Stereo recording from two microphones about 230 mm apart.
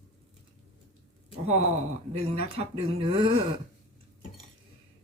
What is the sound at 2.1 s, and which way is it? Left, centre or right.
Speech, right.